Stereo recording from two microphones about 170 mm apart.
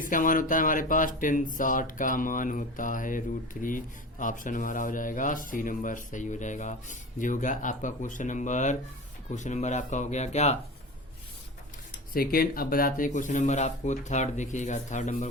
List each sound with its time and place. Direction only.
0.0 s speech: 50° left (ahead or behind)
12.1 s speech: 60° left (ahead or behind)